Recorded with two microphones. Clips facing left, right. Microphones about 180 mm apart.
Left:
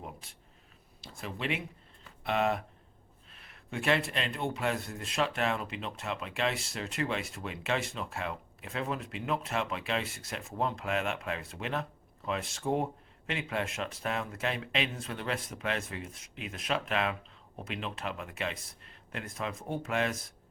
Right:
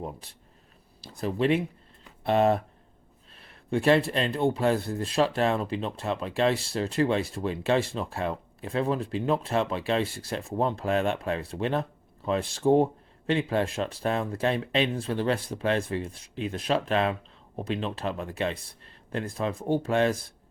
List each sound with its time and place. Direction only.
1.0 s speech: 35° right (ahead or behind)